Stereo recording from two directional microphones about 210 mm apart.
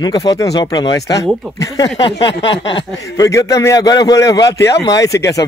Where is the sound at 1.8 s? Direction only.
25° left (ahead or behind).